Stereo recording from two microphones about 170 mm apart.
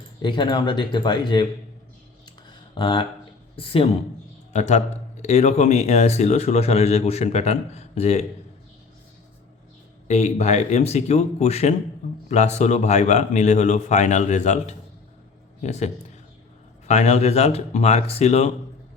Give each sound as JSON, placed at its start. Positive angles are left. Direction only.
{"t": 0.2, "sound": "speech", "side_deg": 25}
{"t": 2.7, "sound": "speech", "side_deg": 30}
{"t": 4.5, "sound": "a man's voice", "side_deg": 45}
{"t": 10.1, "sound": "a man's voice", "side_deg": 40}